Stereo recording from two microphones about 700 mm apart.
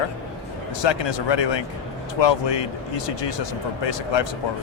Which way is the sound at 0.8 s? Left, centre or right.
Left.